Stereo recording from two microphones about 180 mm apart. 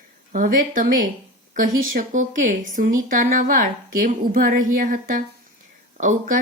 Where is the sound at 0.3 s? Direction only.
50° right (ahead or behind).